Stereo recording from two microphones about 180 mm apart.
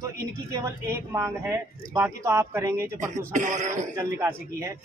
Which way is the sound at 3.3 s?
45° right (ahead or behind).